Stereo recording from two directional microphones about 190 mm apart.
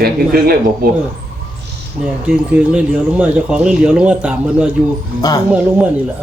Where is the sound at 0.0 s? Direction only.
50° right (ahead or behind).